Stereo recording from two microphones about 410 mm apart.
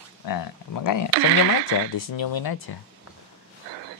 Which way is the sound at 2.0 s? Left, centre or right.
Left.